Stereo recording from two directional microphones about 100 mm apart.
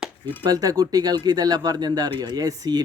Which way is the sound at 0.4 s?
40° right (ahead or behind).